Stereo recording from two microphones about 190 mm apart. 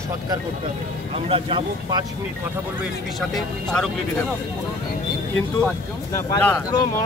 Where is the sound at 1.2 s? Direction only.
30° right (ahead or behind).